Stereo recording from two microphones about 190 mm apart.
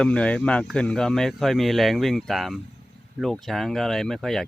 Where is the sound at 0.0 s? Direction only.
5° left (ahead or behind).